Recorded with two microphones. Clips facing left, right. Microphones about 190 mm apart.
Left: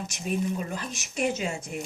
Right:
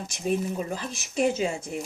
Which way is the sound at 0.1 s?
30° right (ahead or behind).